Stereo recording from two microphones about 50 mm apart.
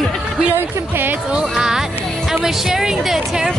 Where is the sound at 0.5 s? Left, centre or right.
Right.